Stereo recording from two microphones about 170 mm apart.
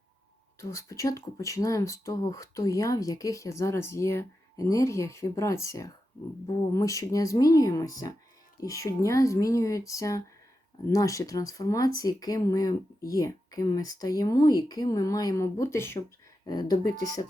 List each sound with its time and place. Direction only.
0.6 s speech: 15° left (ahead or behind)